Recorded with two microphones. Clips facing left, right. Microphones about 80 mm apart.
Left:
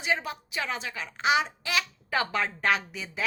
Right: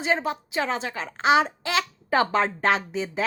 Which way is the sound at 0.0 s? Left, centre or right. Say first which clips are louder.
Right 5 dB; right.